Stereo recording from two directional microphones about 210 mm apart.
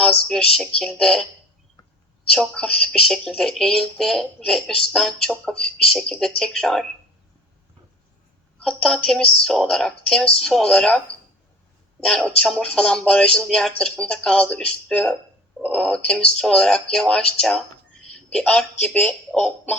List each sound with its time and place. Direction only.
0.0 s speech: 5° left (ahead or behind)
2.3 s speech: centre (ahead or behind)
8.6 s speech: 5° left (ahead or behind)
12.4 s speech: 5° left (ahead or behind)